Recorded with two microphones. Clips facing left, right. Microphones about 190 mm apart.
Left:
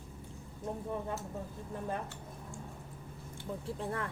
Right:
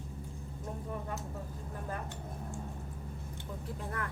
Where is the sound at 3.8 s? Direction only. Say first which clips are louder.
Left 3 dB; 30° left (ahead or behind).